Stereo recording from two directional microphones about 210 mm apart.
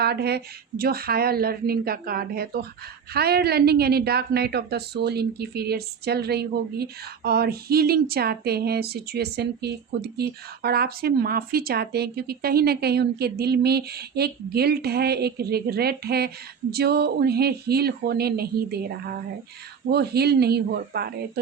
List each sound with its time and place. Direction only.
0.0 s a woman's voice: 50° right (ahead or behind)